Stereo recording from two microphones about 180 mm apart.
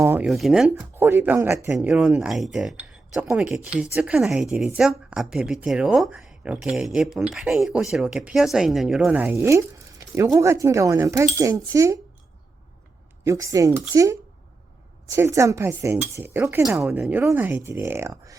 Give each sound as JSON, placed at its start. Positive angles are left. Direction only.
{"t": 0.0, "sound": "a sound", "side_deg": -10}
{"t": 0.3, "sound": "a woman's voice", "side_deg": 0}
{"t": 0.8, "sound": "a woman's voice", "side_deg": -10}
{"t": 13.2, "sound": "speech", "side_deg": -20}
{"t": 16.6, "sound": "speech", "side_deg": 0}